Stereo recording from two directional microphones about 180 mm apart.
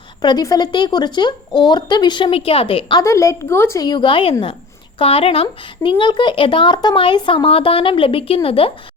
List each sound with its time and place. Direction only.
0.2 s speech: 25° left (ahead or behind)
3.0 s speech: 15° left (ahead or behind)